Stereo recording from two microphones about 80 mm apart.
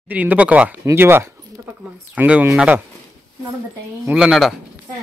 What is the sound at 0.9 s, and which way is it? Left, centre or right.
Speech, right.